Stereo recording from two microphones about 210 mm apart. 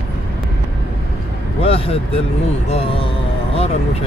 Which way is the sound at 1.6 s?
25° left (ahead or behind).